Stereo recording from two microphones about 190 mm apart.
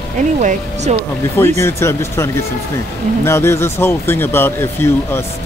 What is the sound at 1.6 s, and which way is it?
Speech, 15° left (ahead or behind).